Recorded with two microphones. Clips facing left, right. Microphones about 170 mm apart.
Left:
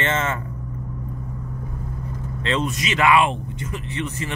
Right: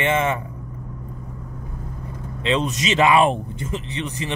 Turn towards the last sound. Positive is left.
turn(degrees=-15)  # may be behind; listen again after turning